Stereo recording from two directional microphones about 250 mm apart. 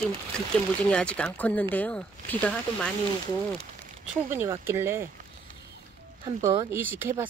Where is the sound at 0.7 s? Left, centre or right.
Centre.